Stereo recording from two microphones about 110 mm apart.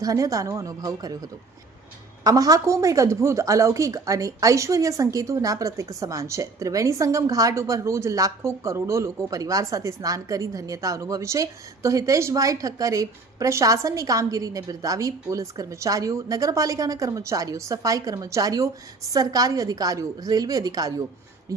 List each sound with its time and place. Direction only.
0.0 s speech: 30° right (ahead or behind)
2.2 s speech: 35° right (ahead or behind)